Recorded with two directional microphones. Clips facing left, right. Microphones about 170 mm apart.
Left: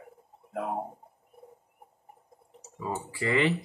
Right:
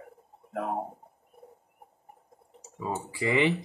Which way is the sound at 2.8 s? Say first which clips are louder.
Right 1 dB; 15° right (ahead or behind).